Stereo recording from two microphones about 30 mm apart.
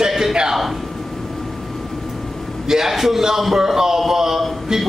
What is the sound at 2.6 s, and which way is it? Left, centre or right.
A man's voice, centre.